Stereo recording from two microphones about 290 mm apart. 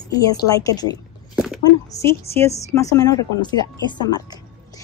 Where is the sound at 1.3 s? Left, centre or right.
Centre.